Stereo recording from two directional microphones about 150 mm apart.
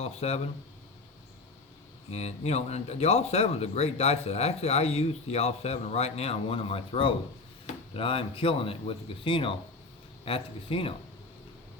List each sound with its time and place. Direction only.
0.0 s speech: 45° left (ahead or behind)
2.0 s speech: 45° left (ahead or behind)